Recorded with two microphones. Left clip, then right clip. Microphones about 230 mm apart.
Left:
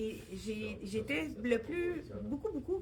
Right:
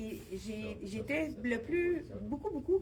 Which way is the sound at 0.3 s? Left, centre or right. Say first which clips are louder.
Left 1 dB; left.